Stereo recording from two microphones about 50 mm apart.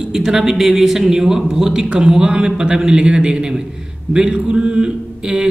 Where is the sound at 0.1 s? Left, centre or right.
Centre.